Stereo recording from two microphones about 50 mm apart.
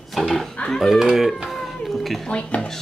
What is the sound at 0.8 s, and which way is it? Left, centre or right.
Speech, centre.